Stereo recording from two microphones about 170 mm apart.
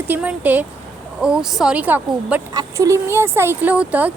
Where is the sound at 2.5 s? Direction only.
20° right (ahead or behind).